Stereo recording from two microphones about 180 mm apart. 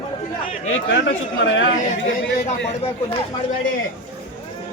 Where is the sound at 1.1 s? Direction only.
90° left.